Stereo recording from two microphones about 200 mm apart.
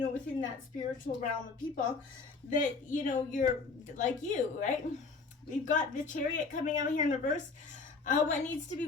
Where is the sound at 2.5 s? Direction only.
40° left (ahead or behind).